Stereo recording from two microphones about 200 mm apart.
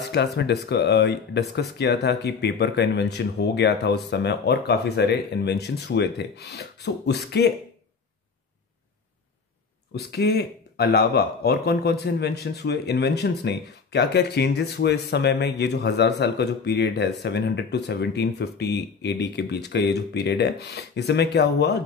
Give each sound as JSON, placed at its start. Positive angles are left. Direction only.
{"t": 0.1, "sound": "speech", "side_deg": 55}
{"t": 9.9, "sound": "speech", "side_deg": 55}